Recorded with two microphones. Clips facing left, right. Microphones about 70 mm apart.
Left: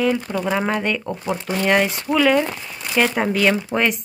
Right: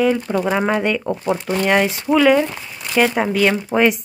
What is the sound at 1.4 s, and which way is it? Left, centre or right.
Speech, centre.